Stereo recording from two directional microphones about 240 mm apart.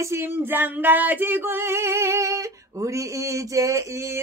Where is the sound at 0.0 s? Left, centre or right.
Centre.